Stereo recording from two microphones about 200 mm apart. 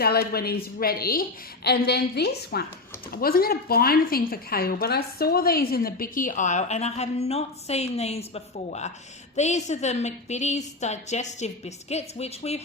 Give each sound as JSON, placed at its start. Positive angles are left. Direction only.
{"t": 0.0, "sound": "a woman's voice", "side_deg": 50}